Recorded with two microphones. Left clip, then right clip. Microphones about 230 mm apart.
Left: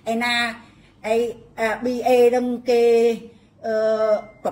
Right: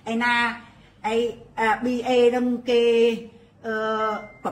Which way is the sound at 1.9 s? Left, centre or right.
Right.